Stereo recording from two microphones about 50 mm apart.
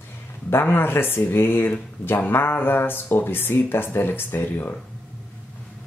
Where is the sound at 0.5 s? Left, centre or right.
Left.